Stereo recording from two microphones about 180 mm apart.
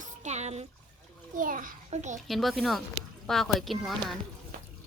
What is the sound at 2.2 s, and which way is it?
Speech, centre (ahead or behind).